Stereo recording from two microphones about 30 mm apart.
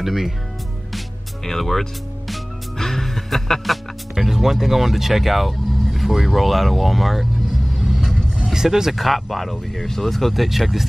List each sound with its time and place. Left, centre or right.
0.0 s speech: centre
1.4 s speech: centre
2.8 s music: centre
4.1 s speech: centre
7.7 s vehicle: centre
8.5 s music: centre
8.9 s speech: centre